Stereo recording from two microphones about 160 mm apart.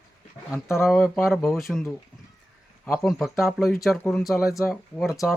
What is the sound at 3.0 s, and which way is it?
Speech, centre (ahead or behind).